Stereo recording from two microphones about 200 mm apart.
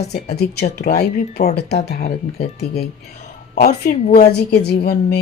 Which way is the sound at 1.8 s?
35° left (ahead or behind).